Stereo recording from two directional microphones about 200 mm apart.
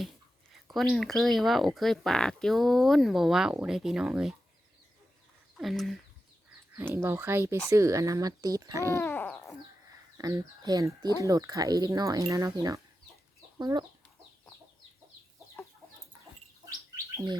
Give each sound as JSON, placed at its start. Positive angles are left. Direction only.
{"t": 0.7, "sound": "speech", "side_deg": 0}
{"t": 5.5, "sound": "speech", "side_deg": 0}
{"t": 6.7, "sound": "speech", "side_deg": -10}
{"t": 9.0, "sound": "a sound", "side_deg": 10}
{"t": 10.2, "sound": "speech", "side_deg": -20}